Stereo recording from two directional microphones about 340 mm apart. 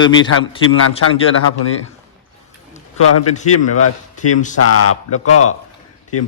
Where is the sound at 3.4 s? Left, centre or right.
Left.